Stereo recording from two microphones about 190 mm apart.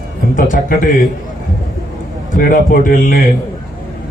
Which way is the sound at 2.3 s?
45° left (ahead or behind).